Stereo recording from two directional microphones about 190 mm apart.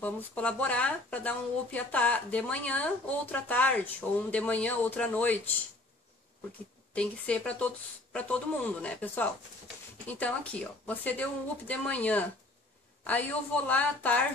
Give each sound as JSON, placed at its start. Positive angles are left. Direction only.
{"t": 0.0, "sound": "speech", "side_deg": 5}
{"t": 6.9, "sound": "speech", "side_deg": 5}
{"t": 13.7, "sound": "speech", "side_deg": 10}